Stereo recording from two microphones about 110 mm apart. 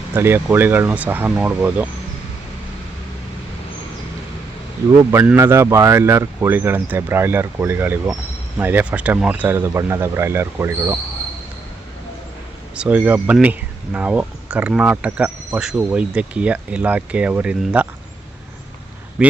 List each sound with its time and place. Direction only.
0.1 s speech: 20° right (ahead or behind)
5.4 s speech: 25° right (ahead or behind)
12.7 s speech: 10° right (ahead or behind)
19.2 s a man's voice: 10° right (ahead or behind)